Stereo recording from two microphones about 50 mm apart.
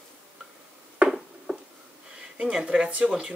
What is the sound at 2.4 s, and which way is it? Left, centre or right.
Speech, centre.